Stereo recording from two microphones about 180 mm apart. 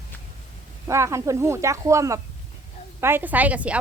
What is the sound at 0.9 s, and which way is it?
A woman's voice, 15° right (ahead or behind).